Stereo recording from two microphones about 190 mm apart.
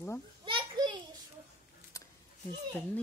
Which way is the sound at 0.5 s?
25° right (ahead or behind).